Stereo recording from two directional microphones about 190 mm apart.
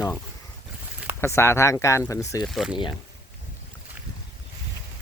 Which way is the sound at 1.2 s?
15° left (ahead or behind).